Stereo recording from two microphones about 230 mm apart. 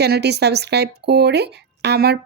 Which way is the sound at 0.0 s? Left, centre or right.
Right.